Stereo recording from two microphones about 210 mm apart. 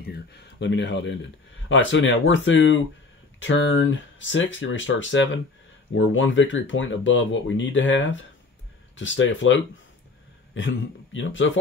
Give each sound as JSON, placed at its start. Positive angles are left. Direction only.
{"t": 0.0, "sound": "speech", "side_deg": 50}